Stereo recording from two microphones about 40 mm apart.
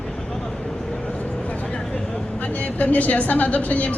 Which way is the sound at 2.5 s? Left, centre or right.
Left.